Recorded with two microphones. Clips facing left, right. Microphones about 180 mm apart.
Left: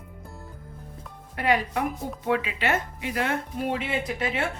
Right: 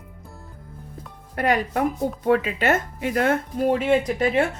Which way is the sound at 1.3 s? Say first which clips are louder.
Right 3 dB; 45° right (ahead or behind).